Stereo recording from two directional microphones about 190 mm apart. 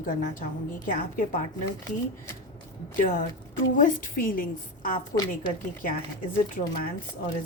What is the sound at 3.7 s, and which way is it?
A woman's voice, 45° left (ahead or behind).